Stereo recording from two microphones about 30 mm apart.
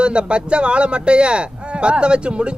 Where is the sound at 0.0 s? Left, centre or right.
Right.